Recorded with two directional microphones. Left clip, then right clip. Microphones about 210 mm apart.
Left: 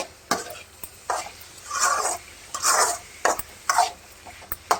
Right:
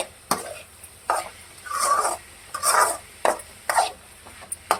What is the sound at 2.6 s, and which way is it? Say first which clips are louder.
Filing: right 2 dB; centre (ahead or behind).